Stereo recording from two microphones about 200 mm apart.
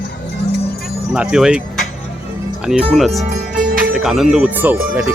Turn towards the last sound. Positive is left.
turn(degrees=-10)  # may be behind; listen again after turning